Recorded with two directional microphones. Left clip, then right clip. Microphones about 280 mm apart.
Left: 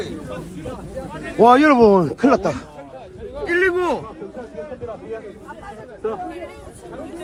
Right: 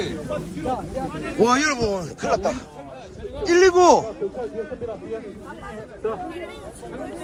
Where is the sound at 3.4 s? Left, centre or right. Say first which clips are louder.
Right 4 dB; centre.